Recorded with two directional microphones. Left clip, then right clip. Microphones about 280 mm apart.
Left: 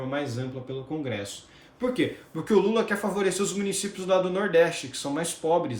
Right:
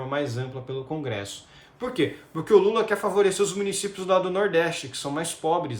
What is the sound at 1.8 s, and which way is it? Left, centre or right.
Speech, centre.